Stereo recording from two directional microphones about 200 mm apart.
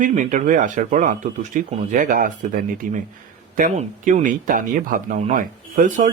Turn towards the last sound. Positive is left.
turn(degrees=-40)  # may be behind; listen again after turning